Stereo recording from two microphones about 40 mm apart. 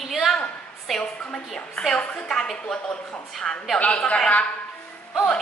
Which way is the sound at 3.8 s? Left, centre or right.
Left.